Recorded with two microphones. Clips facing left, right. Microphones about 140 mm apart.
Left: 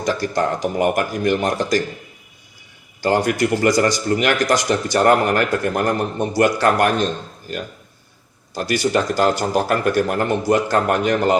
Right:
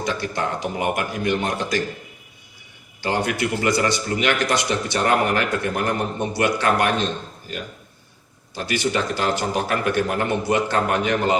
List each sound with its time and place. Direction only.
0.0 s a man's voice: 40° left (ahead or behind)
3.0 s a man's voice: 45° left (ahead or behind)
8.5 s a man's voice: 40° left (ahead or behind)